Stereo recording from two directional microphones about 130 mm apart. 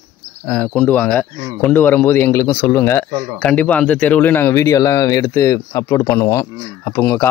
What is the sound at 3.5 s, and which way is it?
Speech, 10° left (ahead or behind).